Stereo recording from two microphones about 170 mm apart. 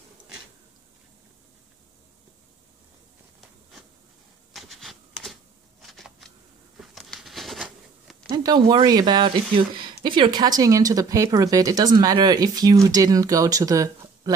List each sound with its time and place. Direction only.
4.6 s shuffling cards: centre (ahead or behind)
6.8 s patter: centre (ahead or behind)
8.3 s speech: 20° right (ahead or behind)